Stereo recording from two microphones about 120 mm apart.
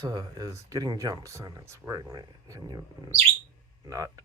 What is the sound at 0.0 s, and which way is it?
Speech, 35° right (ahead or behind).